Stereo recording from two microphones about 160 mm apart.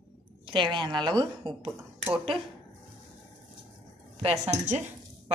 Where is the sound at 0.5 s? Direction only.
30° right (ahead or behind).